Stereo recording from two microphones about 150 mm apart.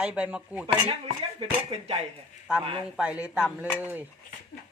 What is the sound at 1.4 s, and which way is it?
Speech, 40° right (ahead or behind).